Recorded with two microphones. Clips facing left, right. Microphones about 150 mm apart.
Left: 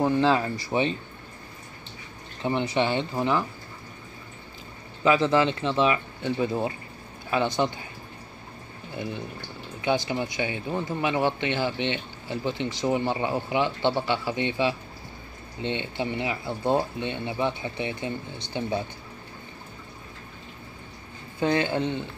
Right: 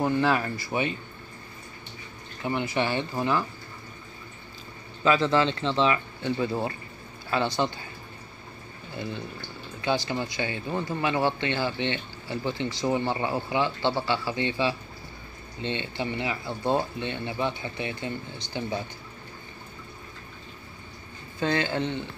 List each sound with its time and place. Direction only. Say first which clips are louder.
0.0 s speech: left 2 dB; 20° left (ahead or behind)
2.4 s speech: left 2 dB; 25° left (ahead or behind)
5.0 s speech: left 1 dB; 15° left (ahead or behind)
8.9 s speech: left 1 dB; 15° left (ahead or behind)
21.4 s speech: left 2 dB; 15° left (ahead or behind)